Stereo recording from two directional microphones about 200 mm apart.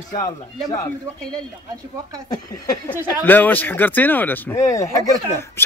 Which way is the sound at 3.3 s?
10° left (ahead or behind).